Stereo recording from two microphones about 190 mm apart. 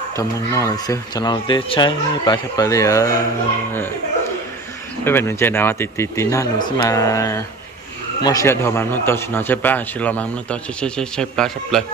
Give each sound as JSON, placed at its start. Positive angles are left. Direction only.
{"t": 0.1, "sound": "speech", "side_deg": 15}
{"t": 5.0, "sound": "speech", "side_deg": 15}